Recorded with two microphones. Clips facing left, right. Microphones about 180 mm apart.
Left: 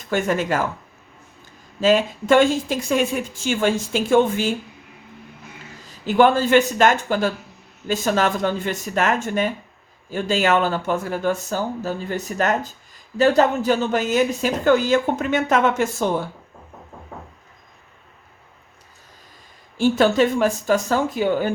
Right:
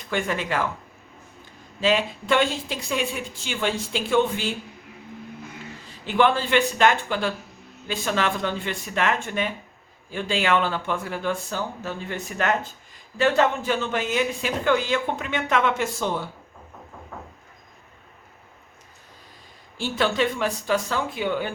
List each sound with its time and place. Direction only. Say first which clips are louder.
0.1 s speech: left 5 dB; 45° left (ahead or behind)
1.8 s speech: left 5 dB; 45° left (ahead or behind)
5.8 s a woman's voice: left 5 dB; 40° left (ahead or behind)
19.7 s speech: left 8 dB; 45° left (ahead or behind)